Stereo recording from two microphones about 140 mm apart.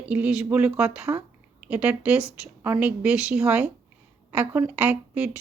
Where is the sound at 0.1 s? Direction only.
10° right (ahead or behind).